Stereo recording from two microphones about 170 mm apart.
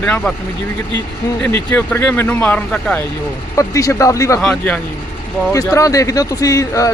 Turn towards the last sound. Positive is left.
turn(degrees=20)  # may be behind; listen again after turning